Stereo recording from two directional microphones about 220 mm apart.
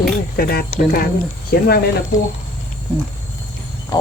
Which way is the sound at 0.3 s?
45° left (ahead or behind).